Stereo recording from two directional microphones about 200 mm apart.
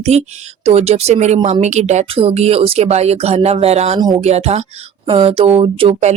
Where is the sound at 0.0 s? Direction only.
35° right (ahead or behind).